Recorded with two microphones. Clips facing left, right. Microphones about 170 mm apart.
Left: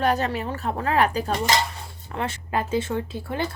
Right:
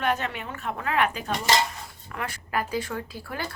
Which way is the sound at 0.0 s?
35° left (ahead or behind).